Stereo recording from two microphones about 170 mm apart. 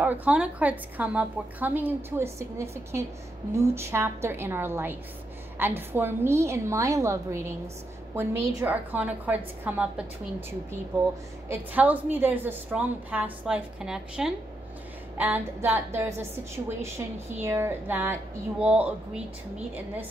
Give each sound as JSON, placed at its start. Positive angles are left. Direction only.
{"t": 0.0, "sound": "a woman's voice", "side_deg": -10}
{"t": 11.4, "sound": "a woman's voice", "side_deg": -10}